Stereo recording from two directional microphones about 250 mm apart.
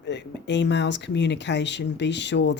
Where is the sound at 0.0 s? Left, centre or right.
Left.